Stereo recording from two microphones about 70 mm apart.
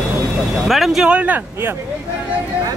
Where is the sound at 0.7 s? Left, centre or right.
Centre.